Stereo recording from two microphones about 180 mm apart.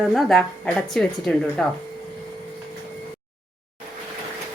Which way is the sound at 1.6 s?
Centre (ahead or behind).